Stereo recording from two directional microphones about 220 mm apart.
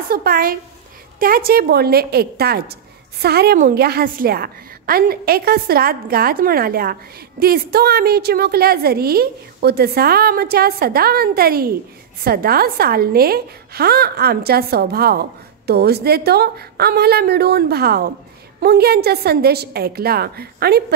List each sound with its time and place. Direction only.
0.1 s a woman's voice: 40° right (ahead or behind)